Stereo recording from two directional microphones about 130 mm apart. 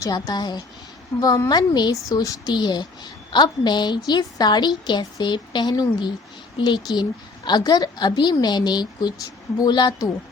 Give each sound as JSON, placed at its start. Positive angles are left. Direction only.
{"t": 0.0, "sound": "speech", "side_deg": 30}